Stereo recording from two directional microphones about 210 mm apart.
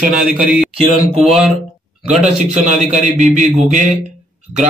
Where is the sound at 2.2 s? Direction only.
35° right (ahead or behind).